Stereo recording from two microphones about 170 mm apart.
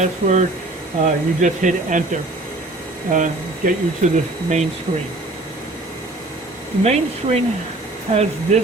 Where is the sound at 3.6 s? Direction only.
50° right (ahead or behind).